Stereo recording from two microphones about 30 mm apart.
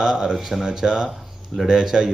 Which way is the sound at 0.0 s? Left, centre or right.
Right.